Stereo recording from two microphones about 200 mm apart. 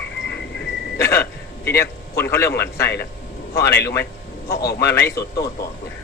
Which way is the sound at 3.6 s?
10° left (ahead or behind).